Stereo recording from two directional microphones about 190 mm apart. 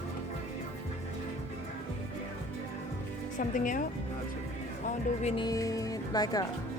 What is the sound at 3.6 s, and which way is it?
Speech, 45° left (ahead or behind).